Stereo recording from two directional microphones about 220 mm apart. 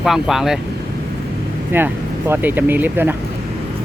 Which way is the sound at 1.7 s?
10° right (ahead or behind).